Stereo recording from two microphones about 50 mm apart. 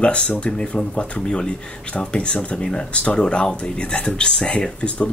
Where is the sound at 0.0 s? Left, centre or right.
Left.